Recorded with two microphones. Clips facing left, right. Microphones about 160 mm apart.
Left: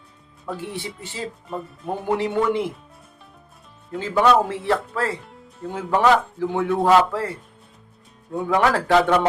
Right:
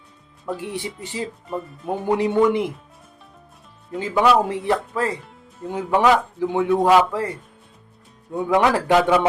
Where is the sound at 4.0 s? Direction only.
15° right (ahead or behind).